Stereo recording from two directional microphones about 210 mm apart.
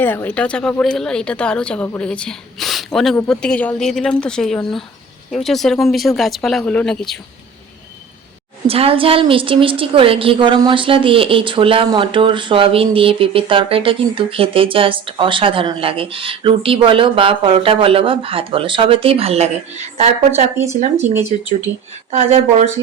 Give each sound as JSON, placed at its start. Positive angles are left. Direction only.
{"t": 0.0, "sound": "a woman's voice", "side_deg": 10}
{"t": 8.6, "sound": "a woman's voice", "side_deg": -25}
{"t": 20.6, "sound": "speech", "side_deg": -10}
{"t": 21.3, "sound": "speech", "side_deg": -35}